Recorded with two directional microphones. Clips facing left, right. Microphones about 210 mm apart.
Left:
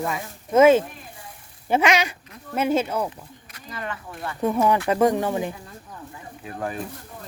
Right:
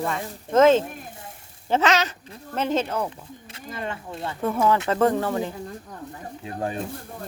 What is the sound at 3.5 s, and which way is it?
Speech, 25° right (ahead or behind).